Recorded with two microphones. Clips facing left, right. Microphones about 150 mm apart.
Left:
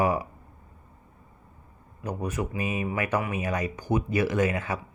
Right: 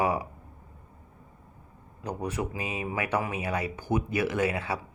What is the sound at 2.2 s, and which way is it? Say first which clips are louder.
Speech: left 2 dB; 15° right (ahead or behind).